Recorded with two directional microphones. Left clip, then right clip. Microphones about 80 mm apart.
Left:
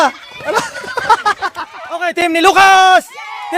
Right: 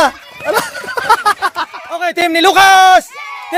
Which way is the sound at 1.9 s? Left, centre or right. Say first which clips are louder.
Even; centre.